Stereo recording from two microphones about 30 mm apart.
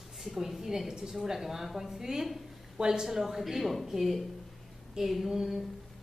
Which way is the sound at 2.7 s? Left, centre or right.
Right.